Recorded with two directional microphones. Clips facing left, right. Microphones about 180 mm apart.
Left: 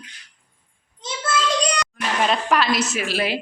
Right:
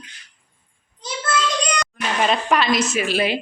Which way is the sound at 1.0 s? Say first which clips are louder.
Right 1 dB; 25° left (ahead or behind).